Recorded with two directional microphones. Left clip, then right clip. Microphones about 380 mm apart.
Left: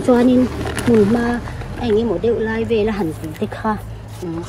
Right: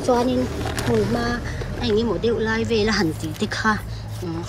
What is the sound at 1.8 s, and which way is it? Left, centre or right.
Speech, centre.